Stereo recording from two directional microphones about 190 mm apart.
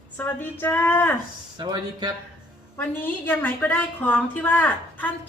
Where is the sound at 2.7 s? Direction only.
10° left (ahead or behind).